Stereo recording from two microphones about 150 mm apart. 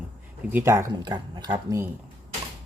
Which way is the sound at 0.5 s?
20° right (ahead or behind).